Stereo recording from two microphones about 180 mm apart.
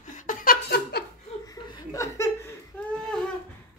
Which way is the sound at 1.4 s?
20° left (ahead or behind).